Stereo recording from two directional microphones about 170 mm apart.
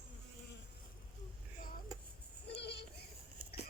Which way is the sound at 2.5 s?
80° left.